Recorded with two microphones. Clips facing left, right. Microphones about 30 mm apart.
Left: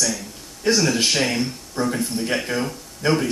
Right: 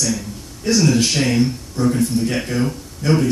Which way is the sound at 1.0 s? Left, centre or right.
Centre.